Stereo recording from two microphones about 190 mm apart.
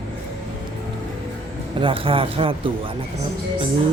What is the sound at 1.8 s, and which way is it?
Speech, 30° right (ahead or behind).